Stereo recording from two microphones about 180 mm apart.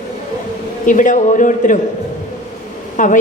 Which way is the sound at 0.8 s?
45° left (ahead or behind).